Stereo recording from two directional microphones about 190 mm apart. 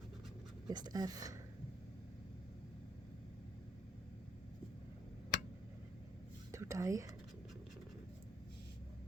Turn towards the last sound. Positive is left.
turn(degrees=-15)  # may be behind; listen again after turning